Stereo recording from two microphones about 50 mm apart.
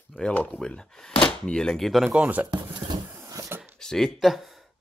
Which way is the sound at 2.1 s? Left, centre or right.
Right.